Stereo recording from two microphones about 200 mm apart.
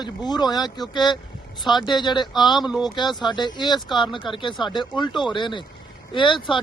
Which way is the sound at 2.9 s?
20° left (ahead or behind).